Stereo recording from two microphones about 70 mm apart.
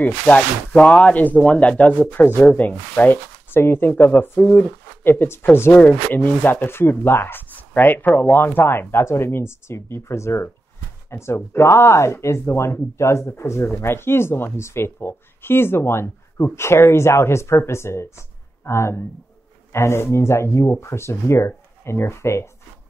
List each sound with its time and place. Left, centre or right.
0.0 s speech: left
5.7 s speech: left